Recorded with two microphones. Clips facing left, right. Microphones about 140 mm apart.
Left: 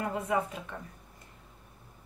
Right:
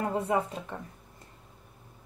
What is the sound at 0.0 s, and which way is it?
Speech, 30° right (ahead or behind).